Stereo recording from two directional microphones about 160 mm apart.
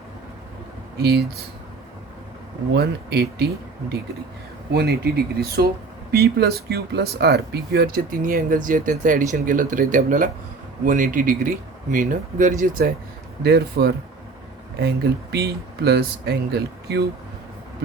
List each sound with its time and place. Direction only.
0.9 s speech: 90° right
2.7 s speech: 90° right
4.7 s speech: 75° right (ahead or behind); by 12.9 s 55° right (ahead or behind)
13.4 s speech: 85° right